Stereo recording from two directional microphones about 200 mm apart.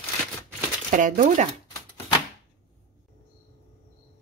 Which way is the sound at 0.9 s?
40° right (ahead or behind).